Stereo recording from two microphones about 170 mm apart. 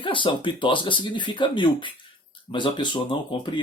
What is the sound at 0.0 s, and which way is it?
Speech, 30° left (ahead or behind).